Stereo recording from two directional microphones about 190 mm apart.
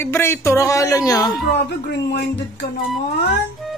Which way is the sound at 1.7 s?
60° left (ahead or behind).